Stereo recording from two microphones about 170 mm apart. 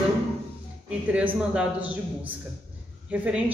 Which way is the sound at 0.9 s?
5° right (ahead or behind).